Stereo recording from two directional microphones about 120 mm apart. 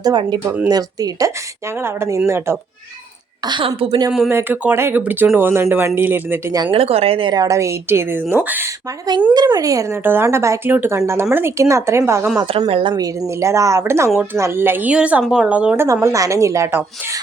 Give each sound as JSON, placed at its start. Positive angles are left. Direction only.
{"t": 0.0, "sound": "a woman's voice", "side_deg": -40}
{"t": 0.4, "sound": "speech", "side_deg": -10}
{"t": 0.7, "sound": "speech", "side_deg": -30}
{"t": 3.4, "sound": "a woman's voice", "side_deg": -40}
{"t": 4.3, "sound": "speech", "side_deg": -20}
{"t": 6.7, "sound": "a woman's voice", "side_deg": -55}
{"t": 7.3, "sound": "speech", "side_deg": -30}
{"t": 9.3, "sound": "speech", "side_deg": -35}
{"t": 12.5, "sound": "speech", "side_deg": -55}